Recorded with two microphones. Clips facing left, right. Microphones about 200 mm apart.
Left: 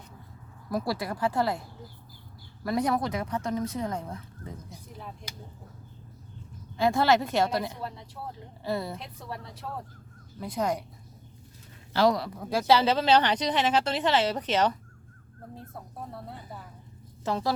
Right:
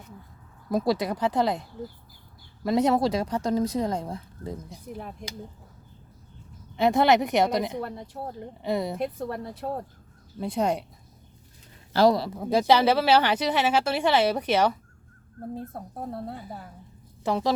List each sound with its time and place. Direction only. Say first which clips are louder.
0.7 s speech: right 5 dB; 20° right (ahead or behind)
2.6 s speech: right 5 dB; 25° right (ahead or behind)
6.7 s speech: right 3 dB; 20° right (ahead or behind)
7.8 s speech: right 5 dB; 55° right (ahead or behind)
8.6 s speech: right 4 dB; 20° right (ahead or behind)
9.0 s a woman's voice: right 10 dB; 55° right (ahead or behind)
10.4 s speech: right 3 dB; 25° right (ahead or behind)
11.9 s speech: right 3 dB; 35° right (ahead or behind); by 14.8 s 10° right (ahead or behind)
15.5 s a woman's voice: right 4 dB; 55° right (ahead or behind)
17.2 s speech: right 3 dB; 15° right (ahead or behind)